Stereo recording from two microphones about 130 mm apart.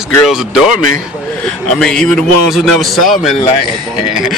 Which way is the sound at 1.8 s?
5° left (ahead or behind).